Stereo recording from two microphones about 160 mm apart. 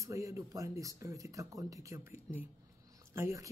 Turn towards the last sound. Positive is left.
turn(degrees=-20)  # may be behind; listen again after turning